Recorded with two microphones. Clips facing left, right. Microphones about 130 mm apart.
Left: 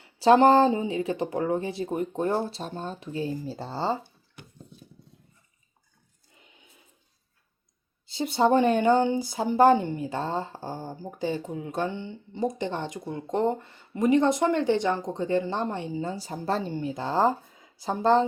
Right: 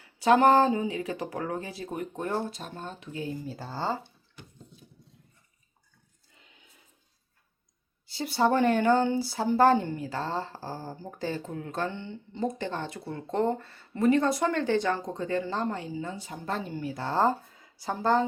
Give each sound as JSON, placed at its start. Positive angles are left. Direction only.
{"t": 0.0, "sound": "speech", "side_deg": 30}
{"t": 8.0, "sound": "speech", "side_deg": 20}